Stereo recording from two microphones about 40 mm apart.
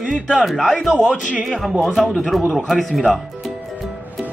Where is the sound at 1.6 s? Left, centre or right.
Centre.